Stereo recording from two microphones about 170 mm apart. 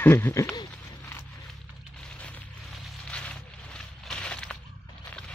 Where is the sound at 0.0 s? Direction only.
10° left (ahead or behind).